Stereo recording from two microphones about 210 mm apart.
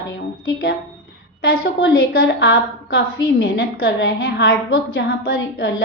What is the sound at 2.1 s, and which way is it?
A woman's voice, 50° left (ahead or behind).